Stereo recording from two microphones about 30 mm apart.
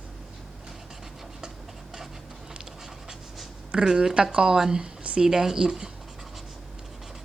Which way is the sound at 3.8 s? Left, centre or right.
Right.